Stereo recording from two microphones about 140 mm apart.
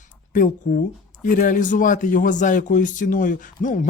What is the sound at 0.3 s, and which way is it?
Speech, 70° left (ahead or behind).